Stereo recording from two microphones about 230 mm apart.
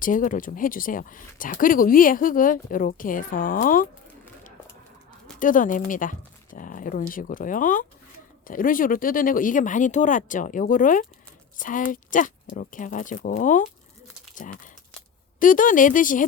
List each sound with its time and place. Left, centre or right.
0.0 s speech: left
5.4 s speech: left
15.4 s speech: left